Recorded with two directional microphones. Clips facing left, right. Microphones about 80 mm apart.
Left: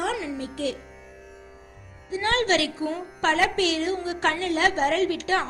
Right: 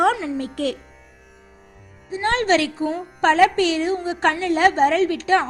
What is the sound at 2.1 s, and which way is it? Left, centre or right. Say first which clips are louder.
Speech: right 4 dB; right.